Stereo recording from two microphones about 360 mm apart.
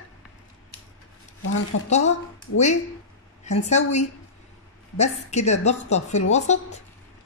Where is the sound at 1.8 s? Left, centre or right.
Centre.